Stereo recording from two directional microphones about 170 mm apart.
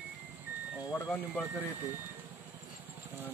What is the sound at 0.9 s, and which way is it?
Speech, 10° left (ahead or behind).